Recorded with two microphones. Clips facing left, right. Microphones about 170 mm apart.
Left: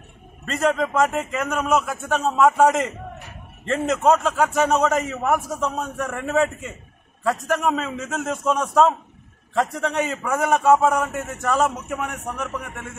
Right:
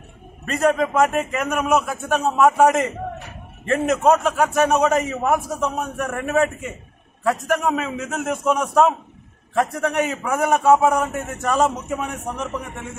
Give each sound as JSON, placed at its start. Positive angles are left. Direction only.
{"t": 0.5, "sound": "a man's voice", "side_deg": -15}